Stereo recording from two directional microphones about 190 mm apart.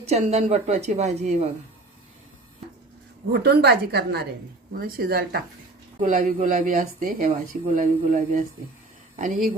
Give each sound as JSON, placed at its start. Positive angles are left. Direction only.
{"t": 0.0, "sound": "a woman's voice", "side_deg": -35}
{"t": 3.3, "sound": "a woman's voice", "side_deg": -55}
{"t": 6.0, "sound": "speech", "side_deg": -45}